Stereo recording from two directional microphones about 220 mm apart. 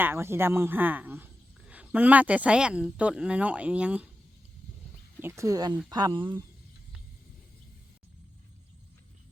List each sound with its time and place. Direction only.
0.0 s a man's voice: 10° right (ahead or behind)
5.2 s a man's voice: 10° right (ahead or behind)